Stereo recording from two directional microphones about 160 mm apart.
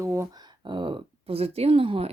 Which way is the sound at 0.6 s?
30° right (ahead or behind).